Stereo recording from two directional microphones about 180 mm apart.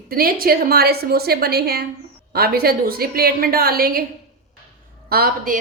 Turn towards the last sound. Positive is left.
turn(degrees=-50)  # may be behind; listen again after turning